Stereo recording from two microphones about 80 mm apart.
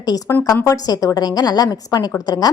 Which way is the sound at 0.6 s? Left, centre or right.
Left.